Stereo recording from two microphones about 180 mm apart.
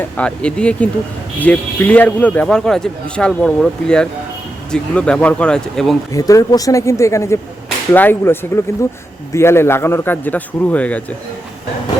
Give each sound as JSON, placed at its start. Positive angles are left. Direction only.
{"t": 0.2, "sound": "a man's voice", "side_deg": 5}
{"t": 6.1, "sound": "a man's voice", "side_deg": 20}